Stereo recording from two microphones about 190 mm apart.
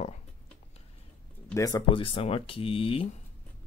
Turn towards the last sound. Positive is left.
turn(degrees=30)  # may be behind; listen again after turning